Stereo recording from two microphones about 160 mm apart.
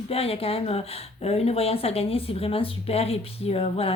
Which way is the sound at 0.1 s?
35° left (ahead or behind).